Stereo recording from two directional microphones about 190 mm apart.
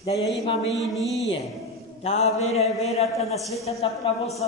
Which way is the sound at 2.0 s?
35° left (ahead or behind).